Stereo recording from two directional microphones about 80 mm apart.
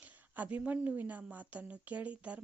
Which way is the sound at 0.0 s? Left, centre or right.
Right.